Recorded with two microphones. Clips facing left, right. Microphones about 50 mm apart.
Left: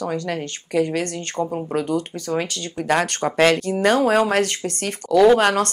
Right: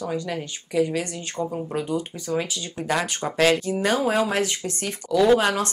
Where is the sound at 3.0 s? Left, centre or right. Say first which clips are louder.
Left 5 dB; left.